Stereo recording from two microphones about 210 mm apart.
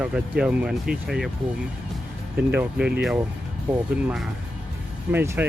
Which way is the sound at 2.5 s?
5° right (ahead or behind).